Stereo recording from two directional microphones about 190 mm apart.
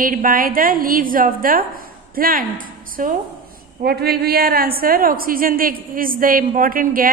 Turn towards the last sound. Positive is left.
turn(degrees=-45)  # may be behind; listen again after turning